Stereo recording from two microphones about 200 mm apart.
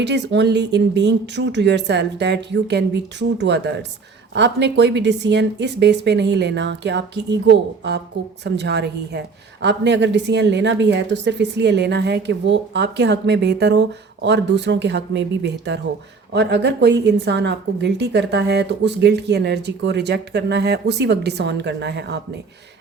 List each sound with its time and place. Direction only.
0.0 s a woman's voice: 60° right (ahead or behind)